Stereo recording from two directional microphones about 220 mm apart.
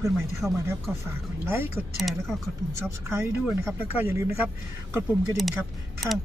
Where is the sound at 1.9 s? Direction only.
Centre (ahead or behind).